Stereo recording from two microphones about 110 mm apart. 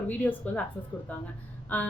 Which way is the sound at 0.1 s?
15° left (ahead or behind).